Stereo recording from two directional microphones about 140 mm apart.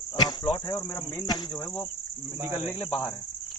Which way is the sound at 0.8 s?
20° left (ahead or behind).